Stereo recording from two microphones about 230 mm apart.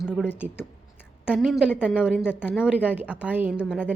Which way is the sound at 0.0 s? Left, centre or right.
Centre.